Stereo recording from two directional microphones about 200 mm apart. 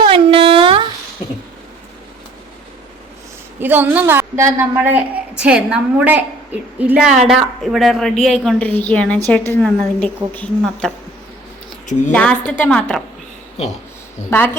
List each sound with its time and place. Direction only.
0.0 s a sound: 25° right (ahead or behind)
3.6 s a woman's voice: 10° right (ahead or behind)
12.1 s a woman's voice: 5° left (ahead or behind)
14.3 s a woman's voice: 10° left (ahead or behind)